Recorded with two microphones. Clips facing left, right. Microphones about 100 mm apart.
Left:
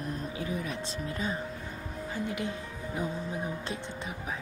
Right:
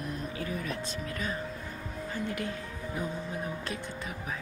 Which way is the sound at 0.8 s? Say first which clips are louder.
Left 1 dB; 25° left (ahead or behind).